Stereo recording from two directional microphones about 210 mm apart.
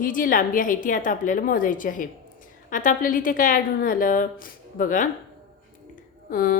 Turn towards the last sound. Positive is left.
turn(degrees=40)  # may be behind; listen again after turning